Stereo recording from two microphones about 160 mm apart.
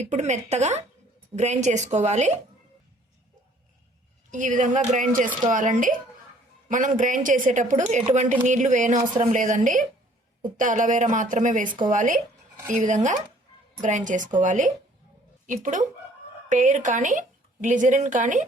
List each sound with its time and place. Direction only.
0.1 s a woman's voice: 45° right (ahead or behind)
4.3 s a woman's voice: 50° right (ahead or behind)